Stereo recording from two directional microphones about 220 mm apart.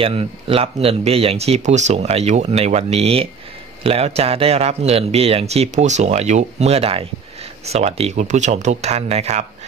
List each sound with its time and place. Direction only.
0.0 s speech: 25° right (ahead or behind)